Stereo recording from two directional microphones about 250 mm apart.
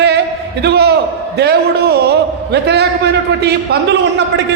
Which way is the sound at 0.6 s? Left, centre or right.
Right.